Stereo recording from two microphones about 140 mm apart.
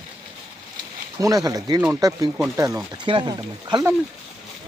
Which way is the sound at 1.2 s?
25° right (ahead or behind).